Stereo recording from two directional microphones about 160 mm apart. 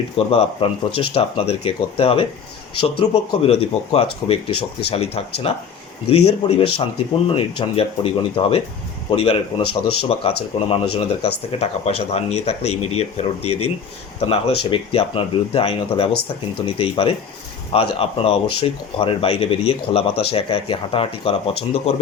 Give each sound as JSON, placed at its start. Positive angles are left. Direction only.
{"t": 0.3, "sound": "speech", "side_deg": 35}